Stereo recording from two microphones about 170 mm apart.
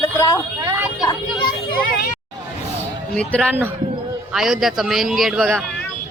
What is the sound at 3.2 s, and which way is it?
A man's voice, 5° left (ahead or behind).